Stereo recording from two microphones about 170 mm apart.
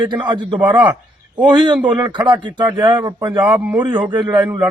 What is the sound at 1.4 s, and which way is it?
Speech, 5° right (ahead or behind).